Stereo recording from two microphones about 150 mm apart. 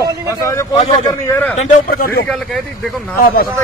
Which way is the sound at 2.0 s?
85° left.